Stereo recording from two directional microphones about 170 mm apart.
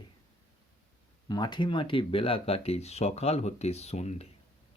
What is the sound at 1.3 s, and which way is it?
Speech, 25° left (ahead or behind).